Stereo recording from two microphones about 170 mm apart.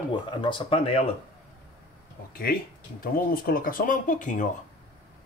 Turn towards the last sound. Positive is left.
turn(degrees=50)  # may be behind; listen again after turning